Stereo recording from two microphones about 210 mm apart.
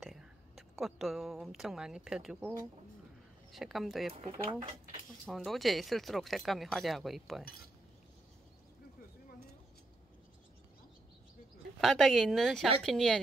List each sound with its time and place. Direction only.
0.0 s a woman's voice: centre (ahead or behind)
3.5 s speech: centre (ahead or behind)
4.1 s speech: 25° right (ahead or behind)
5.2 s speech: centre (ahead or behind)
11.8 s speech: centre (ahead or behind)